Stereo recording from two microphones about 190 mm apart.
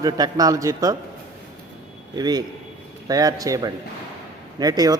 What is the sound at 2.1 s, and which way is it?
A man's voice, 20° right (ahead or behind).